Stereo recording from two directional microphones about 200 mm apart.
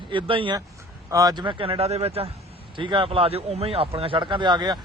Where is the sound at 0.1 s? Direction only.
25° right (ahead or behind).